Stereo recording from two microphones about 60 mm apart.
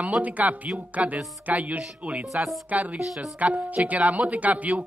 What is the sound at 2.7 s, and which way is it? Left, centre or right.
Music, right.